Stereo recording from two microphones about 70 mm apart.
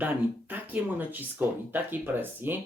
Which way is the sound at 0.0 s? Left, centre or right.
Right.